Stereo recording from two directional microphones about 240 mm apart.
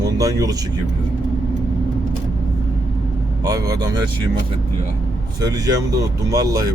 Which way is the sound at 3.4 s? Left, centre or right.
Centre.